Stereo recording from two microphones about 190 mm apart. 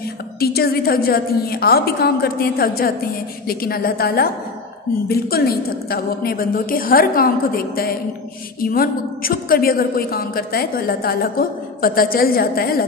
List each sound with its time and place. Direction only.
0.4 s a woman's voice: 55° left (ahead or behind)